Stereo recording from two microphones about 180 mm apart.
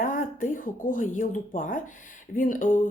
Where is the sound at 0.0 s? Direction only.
50° left (ahead or behind).